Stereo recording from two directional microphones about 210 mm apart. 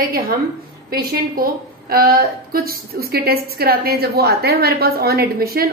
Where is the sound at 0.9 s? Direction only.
45° right (ahead or behind).